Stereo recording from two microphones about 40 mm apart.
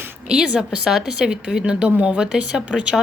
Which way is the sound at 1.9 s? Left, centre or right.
Right.